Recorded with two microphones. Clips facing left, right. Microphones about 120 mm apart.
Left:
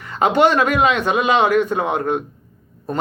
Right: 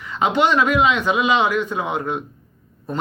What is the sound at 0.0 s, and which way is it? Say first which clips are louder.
Speech: left 3 dB; 45° left (ahead or behind).